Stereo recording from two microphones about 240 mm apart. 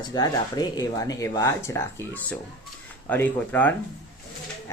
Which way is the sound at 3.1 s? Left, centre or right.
Centre.